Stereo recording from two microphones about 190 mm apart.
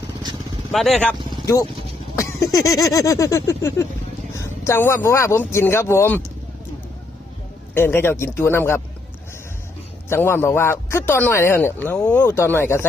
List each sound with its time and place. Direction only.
0.7 s speech: centre (ahead or behind)
2.1 s speech: 15° left (ahead or behind)
7.7 s speech: 10° left (ahead or behind)
10.1 s speech: 10° left (ahead or behind)